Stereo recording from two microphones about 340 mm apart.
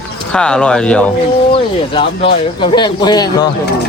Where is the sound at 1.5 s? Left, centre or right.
Centre.